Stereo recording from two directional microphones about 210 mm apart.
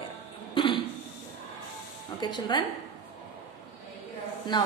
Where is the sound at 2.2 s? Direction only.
20° left (ahead or behind).